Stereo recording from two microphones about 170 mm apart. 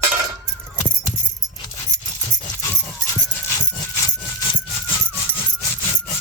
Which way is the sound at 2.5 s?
15° left (ahead or behind).